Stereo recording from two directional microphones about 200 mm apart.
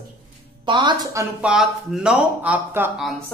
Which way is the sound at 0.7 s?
20° right (ahead or behind).